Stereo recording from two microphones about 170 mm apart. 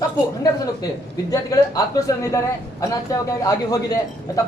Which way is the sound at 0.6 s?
20° left (ahead or behind).